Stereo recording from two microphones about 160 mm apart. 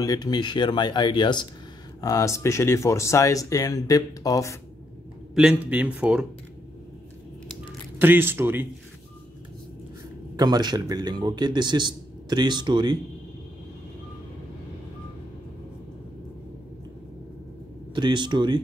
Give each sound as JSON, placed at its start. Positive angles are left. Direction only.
{"t": 0.0, "sound": "speech", "side_deg": 25}
{"t": 5.3, "sound": "speech", "side_deg": -5}
{"t": 8.0, "sound": "speech", "side_deg": -15}
{"t": 10.3, "sound": "a man's voice", "side_deg": -25}
{"t": 17.9, "sound": "a man's voice", "side_deg": -30}